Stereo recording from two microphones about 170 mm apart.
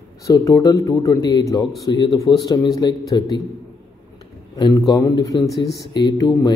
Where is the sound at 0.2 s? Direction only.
20° left (ahead or behind).